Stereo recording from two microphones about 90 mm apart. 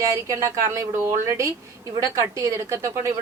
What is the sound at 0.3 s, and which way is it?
A woman's voice, 35° right (ahead or behind).